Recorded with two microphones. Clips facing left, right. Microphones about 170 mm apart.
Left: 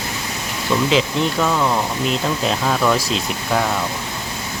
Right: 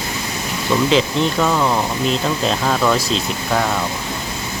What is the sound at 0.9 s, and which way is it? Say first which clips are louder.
Speech: right 2 dB; centre (ahead or behind).